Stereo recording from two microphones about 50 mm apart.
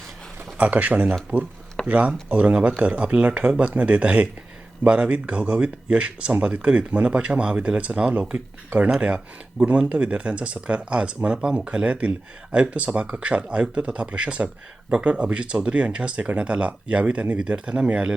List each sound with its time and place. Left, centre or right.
0.5 s speech: right